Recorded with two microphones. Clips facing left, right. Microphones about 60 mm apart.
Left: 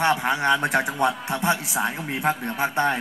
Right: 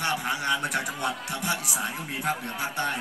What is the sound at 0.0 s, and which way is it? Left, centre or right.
A man's voice, left.